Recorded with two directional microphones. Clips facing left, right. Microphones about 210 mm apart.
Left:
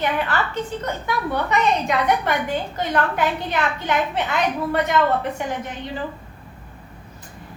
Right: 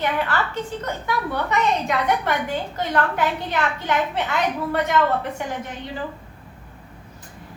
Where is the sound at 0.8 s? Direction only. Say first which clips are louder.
Left 1 dB; 20° left (ahead or behind).